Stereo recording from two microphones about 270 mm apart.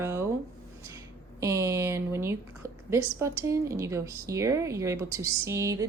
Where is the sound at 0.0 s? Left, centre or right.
Centre.